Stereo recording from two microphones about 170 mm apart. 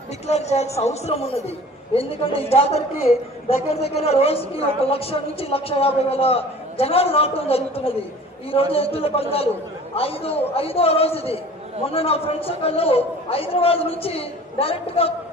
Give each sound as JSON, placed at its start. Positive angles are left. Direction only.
{"t": 0.3, "sound": "a woman's voice", "side_deg": 40}